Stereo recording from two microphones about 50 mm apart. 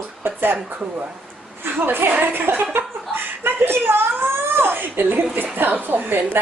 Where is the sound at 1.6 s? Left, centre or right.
Right.